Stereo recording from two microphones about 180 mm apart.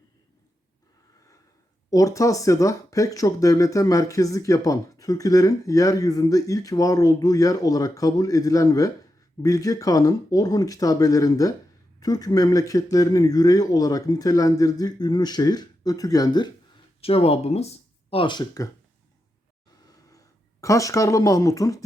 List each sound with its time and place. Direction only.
1.9 s speech: 20° left (ahead or behind)
17.0 s speech: 35° left (ahead or behind)
20.1 s speech: 20° left (ahead or behind)